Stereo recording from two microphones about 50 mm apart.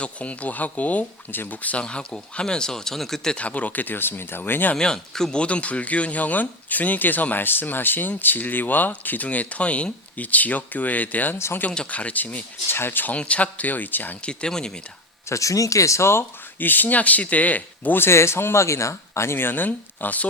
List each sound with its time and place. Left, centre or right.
0.0 s speech: left
1.8 s speech: centre
3.3 s speech: left
4.7 s speech: centre; by 12.5 s left
12.7 s speech: left
13.1 s speech: left
14.2 s speech: centre
15.3 s speech: left
16.6 s speech: left
17.9 s speech: left